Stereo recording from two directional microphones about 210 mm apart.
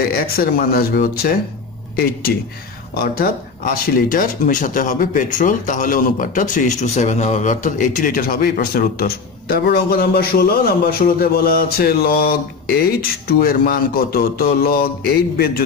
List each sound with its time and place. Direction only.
0.1 s speech: 45° left (ahead or behind)
3.8 s speech: 40° left (ahead or behind)